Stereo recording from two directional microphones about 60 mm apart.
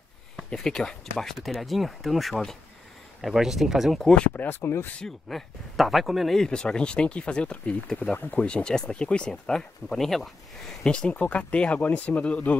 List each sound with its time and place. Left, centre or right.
0.5 s speech: centre
4.3 s speech: left
5.0 s speech: centre; by 8.5 s left
8.5 s speech: centre